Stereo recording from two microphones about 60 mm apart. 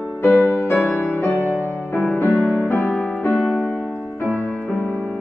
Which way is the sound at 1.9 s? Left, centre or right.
Left.